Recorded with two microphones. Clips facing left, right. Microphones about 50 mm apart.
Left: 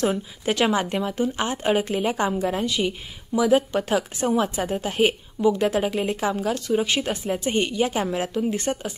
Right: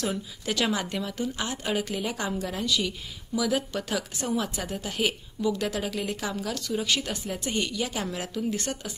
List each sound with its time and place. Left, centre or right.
0.0 s a woman's voice: left